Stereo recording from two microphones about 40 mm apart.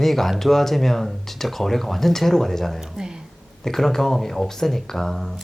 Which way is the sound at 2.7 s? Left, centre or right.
Centre.